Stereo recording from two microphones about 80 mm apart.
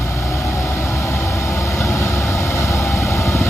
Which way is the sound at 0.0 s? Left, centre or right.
Left.